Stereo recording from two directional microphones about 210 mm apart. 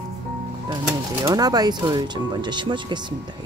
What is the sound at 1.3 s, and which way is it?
Speech, 20° right (ahead or behind).